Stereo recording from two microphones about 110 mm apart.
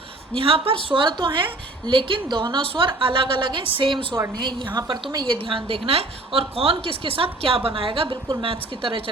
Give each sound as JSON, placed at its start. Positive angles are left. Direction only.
{"t": 0.3, "sound": "a woman's voice", "side_deg": -55}